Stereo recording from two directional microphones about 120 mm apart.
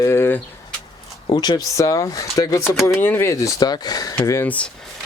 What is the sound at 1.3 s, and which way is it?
Speech, 35° left (ahead or behind).